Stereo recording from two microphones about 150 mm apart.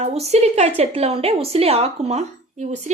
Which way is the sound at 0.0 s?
45° right (ahead or behind).